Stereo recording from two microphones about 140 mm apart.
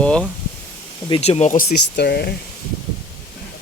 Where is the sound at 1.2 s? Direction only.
50° left (ahead or behind).